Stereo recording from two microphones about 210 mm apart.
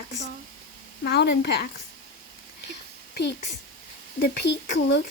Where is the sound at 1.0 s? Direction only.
50° left (ahead or behind).